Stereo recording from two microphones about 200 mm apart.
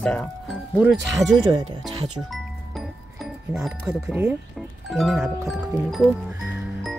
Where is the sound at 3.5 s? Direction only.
5° right (ahead or behind).